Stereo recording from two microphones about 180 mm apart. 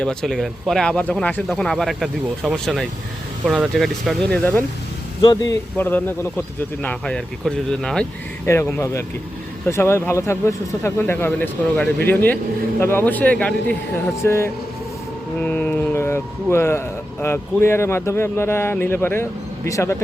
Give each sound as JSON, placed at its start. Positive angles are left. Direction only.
{"t": 0.0, "sound": "speech", "side_deg": 5}
{"t": 5.2, "sound": "speech", "side_deg": 20}
{"t": 5.7, "sound": "speech", "side_deg": 10}
{"t": 8.4, "sound": "speech", "side_deg": 15}